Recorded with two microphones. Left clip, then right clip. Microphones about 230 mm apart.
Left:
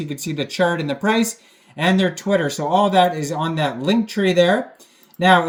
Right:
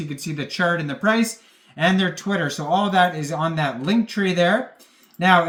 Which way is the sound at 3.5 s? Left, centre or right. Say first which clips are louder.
Left 3 dB; left.